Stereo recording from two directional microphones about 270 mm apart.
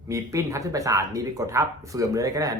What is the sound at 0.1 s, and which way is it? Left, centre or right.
Speech, centre.